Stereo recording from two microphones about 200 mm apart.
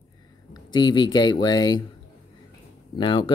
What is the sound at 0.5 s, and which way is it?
Speech, 20° left (ahead or behind).